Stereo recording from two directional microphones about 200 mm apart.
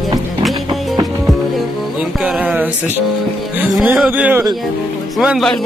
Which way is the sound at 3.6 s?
5° right (ahead or behind).